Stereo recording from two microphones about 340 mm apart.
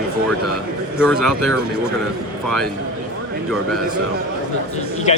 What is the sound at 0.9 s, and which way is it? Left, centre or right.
Speech, centre.